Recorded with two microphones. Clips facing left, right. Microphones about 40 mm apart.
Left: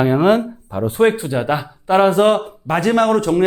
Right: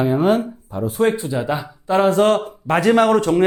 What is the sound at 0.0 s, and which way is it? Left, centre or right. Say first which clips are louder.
Speech: left 3 dB; left.